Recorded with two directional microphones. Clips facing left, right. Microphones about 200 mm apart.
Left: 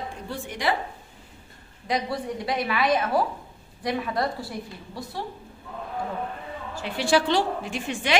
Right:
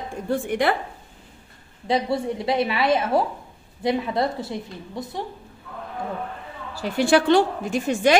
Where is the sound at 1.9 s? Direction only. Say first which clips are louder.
Right 5 dB; 25° right (ahead or behind).